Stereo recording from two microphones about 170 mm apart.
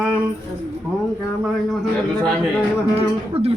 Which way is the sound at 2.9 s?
35° right (ahead or behind).